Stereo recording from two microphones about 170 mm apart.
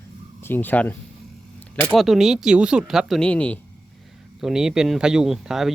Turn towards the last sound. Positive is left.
turn(degrees=0)  # may be behind; listen again after turning